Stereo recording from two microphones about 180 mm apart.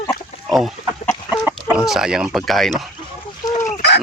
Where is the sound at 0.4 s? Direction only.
Centre (ahead or behind).